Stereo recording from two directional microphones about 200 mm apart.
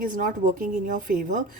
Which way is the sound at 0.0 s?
40° right (ahead or behind).